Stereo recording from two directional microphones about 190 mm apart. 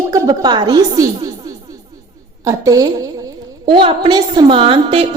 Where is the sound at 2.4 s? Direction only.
20° right (ahead or behind).